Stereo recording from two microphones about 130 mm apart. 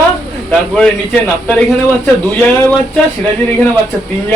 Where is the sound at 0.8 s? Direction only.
10° left (ahead or behind).